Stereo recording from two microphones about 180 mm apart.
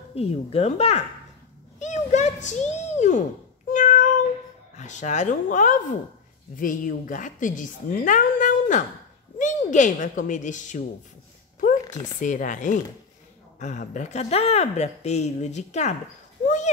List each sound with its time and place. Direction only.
0.1 s a woman's voice: 35° left (ahead or behind)
1.8 s a sound: 40° left (ahead or behind)
4.7 s a woman's voice: 40° left (ahead or behind)
12.2 s a woman's voice: 45° left (ahead or behind)